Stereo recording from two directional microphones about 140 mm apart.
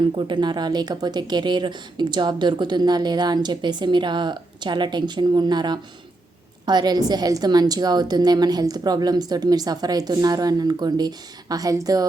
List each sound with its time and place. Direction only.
0.3 s a woman's voice: 35° right (ahead or behind)